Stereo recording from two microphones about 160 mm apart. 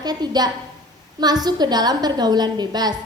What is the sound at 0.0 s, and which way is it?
A woman's voice, 25° right (ahead or behind).